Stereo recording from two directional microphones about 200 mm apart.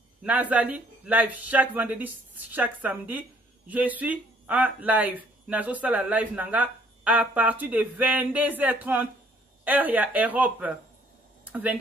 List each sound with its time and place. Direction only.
0.2 s speech: 5° right (ahead or behind)